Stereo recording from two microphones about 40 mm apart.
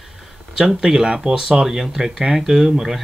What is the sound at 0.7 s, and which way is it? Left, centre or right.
Speech, centre.